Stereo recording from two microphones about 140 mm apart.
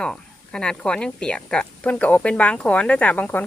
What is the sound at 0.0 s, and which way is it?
Speech, 5° left (ahead or behind).